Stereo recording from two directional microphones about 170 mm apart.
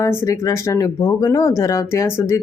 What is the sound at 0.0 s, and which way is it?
Speech, 15° left (ahead or behind).